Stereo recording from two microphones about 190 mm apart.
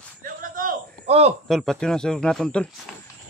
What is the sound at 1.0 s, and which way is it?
Cricket, 35° right (ahead or behind).